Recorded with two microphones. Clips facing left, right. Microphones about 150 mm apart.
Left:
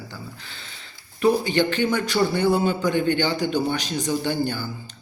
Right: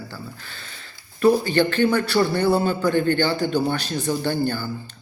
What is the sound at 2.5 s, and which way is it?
Speech, 45° right (ahead or behind).